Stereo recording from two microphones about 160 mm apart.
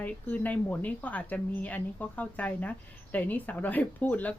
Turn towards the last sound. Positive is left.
turn(degrees=10)  # may be behind; listen again after turning